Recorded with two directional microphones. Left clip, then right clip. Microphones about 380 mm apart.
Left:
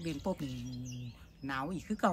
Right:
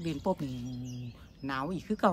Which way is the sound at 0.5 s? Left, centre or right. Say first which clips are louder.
Right 3 dB; left.